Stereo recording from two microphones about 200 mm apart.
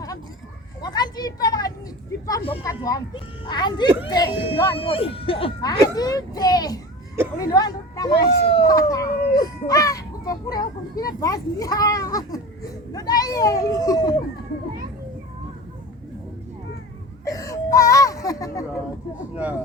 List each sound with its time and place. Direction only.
0.8 s speech: 20° left (ahead or behind)
2.6 s speech: 15° left (ahead or behind)
8.7 s speech: 15° left (ahead or behind)
17.2 s throat clearing: 15° left (ahead or behind)